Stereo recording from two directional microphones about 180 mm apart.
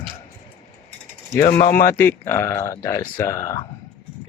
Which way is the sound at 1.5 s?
55° left (ahead or behind).